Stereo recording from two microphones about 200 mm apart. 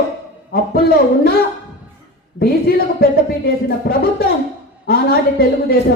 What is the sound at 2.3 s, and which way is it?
A man's voice, 50° left (ahead or behind).